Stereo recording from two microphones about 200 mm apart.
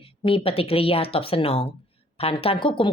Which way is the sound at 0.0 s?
25° left (ahead or behind).